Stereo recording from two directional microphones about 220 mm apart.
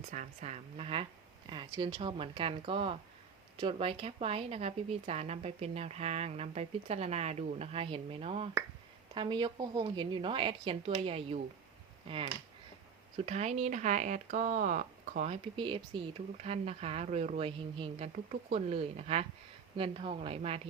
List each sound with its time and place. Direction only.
0.1 s speech: 35° right (ahead or behind)
13.1 s speech: 30° right (ahead or behind)